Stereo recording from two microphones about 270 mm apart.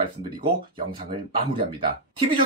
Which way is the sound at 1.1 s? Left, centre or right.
Centre.